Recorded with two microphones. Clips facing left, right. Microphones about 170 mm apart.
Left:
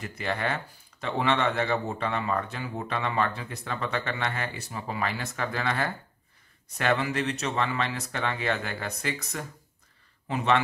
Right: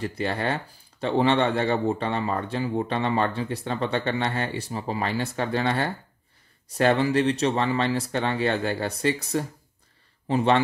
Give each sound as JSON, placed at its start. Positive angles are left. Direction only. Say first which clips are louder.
{"t": 0.0, "sound": "speech", "louder": "right 4 dB", "side_deg": -35}